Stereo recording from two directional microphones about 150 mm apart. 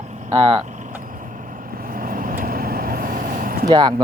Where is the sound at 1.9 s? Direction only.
65° right (ahead or behind).